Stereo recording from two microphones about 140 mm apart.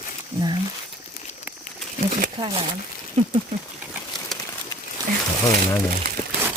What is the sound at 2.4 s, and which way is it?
Speech, 35° right (ahead or behind).